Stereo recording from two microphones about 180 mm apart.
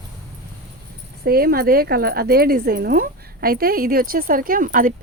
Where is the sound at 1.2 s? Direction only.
55° right (ahead or behind).